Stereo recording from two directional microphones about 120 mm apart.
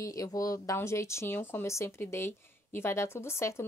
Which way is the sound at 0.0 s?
30° left (ahead or behind).